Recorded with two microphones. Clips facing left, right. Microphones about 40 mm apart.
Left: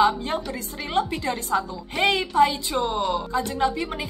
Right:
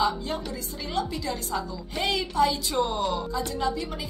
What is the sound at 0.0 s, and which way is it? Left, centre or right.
A woman's voice, left.